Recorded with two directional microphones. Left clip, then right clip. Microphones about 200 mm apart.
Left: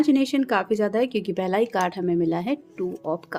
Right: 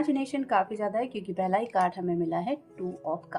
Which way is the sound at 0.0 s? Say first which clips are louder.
Left 8 dB; 45° left (ahead or behind).